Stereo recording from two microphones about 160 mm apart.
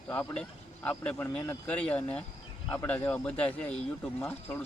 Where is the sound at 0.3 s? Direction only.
5° left (ahead or behind).